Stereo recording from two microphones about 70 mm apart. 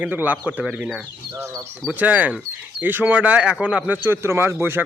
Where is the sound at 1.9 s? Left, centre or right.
Right.